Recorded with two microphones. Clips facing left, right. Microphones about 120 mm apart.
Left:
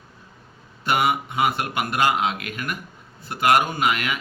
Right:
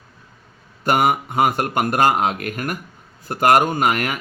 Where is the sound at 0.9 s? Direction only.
45° right (ahead or behind).